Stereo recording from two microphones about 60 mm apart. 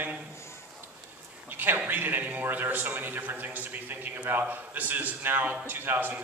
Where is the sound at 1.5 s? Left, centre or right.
Right.